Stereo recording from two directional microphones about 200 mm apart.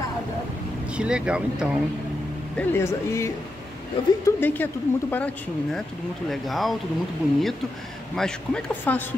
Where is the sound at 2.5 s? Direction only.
10° left (ahead or behind).